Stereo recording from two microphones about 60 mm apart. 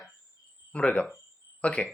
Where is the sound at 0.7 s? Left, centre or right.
Centre.